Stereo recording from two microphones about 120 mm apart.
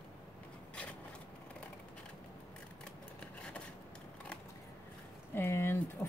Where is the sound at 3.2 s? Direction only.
10° left (ahead or behind).